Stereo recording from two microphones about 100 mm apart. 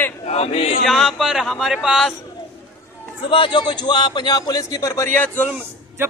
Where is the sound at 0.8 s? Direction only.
Centre (ahead or behind).